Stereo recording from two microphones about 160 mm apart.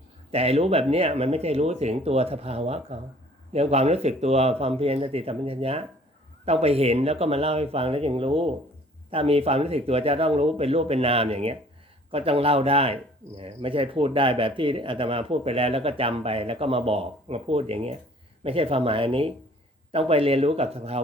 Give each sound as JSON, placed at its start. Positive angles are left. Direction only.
{"t": 0.3, "sound": "speech", "side_deg": -40}